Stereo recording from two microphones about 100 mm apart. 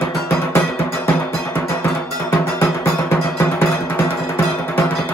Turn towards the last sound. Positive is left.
turn(degrees=25)  # may be behind; listen again after turning